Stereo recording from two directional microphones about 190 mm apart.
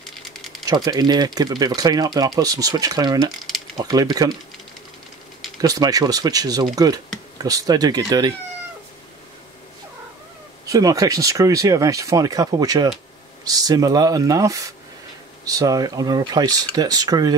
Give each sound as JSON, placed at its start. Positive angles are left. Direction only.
{"t": 0.0, "sound": "typewriter", "side_deg": 0}
{"t": 0.7, "sound": "speech", "side_deg": -20}
{"t": 3.3, "sound": "speech", "side_deg": 0}
{"t": 3.7, "sound": "speech", "side_deg": -20}
{"t": 5.6, "sound": "speech", "side_deg": -20}
{"t": 10.6, "sound": "speech", "side_deg": -20}